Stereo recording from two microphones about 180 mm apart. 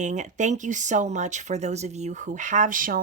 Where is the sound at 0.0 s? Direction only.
40° right (ahead or behind).